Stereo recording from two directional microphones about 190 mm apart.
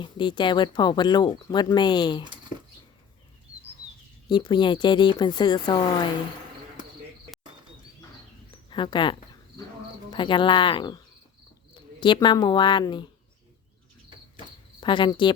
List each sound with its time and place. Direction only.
0.0 s speech: 25° left (ahead or behind)
4.3 s speech: 25° left (ahead or behind)
8.7 s speech: 25° left (ahead or behind)
14.8 s speech: 25° left (ahead or behind)